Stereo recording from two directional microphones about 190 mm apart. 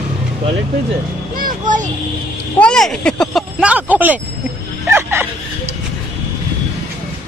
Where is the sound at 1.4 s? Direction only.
45° right (ahead or behind).